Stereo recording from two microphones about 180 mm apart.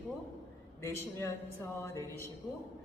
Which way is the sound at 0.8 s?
15° left (ahead or behind).